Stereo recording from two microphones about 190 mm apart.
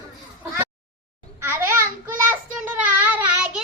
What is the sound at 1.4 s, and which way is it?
Babbling, 15° right (ahead or behind).